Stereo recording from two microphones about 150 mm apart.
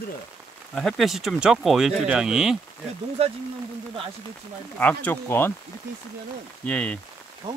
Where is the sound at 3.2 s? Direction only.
40° right (ahead or behind).